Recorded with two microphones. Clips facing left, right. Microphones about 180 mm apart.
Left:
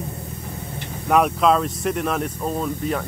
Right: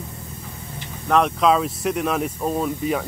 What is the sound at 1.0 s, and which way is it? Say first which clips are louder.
Speech: even; 5° left (ahead or behind).